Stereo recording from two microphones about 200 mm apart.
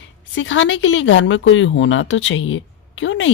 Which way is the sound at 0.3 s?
70° left (ahead or behind).